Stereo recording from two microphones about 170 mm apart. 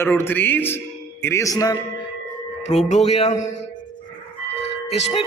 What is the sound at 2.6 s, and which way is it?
Music, 40° left (ahead or behind).